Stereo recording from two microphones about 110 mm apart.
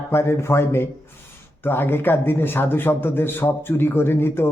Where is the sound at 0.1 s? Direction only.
25° left (ahead or behind).